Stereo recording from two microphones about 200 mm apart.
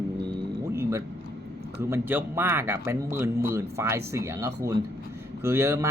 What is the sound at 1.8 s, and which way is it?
A man's voice, 10° right (ahead or behind).